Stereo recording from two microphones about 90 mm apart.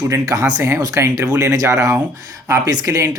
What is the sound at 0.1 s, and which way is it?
Speech, 40° right (ahead or behind).